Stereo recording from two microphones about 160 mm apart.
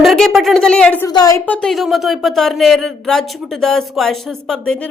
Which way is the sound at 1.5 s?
5° left (ahead or behind).